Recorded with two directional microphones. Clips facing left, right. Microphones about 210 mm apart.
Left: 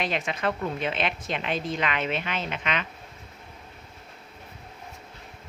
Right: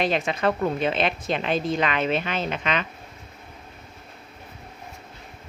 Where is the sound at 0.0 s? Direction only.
35° right (ahead or behind).